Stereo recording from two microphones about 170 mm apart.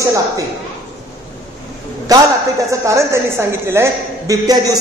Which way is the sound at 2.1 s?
20° right (ahead or behind).